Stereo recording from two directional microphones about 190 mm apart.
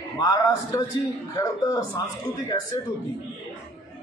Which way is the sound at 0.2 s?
20° left (ahead or behind).